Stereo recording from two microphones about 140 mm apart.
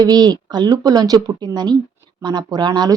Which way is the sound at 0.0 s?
30° right (ahead or behind).